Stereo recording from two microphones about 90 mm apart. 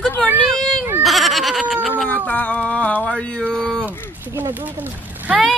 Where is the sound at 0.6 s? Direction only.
5° left (ahead or behind).